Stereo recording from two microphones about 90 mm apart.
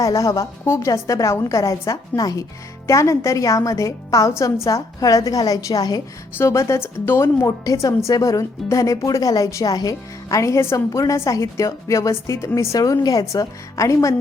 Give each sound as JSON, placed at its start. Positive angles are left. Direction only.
{"t": 0.0, "sound": "a woman's voice", "side_deg": 40}
{"t": 6.3, "sound": "a woman's voice", "side_deg": 30}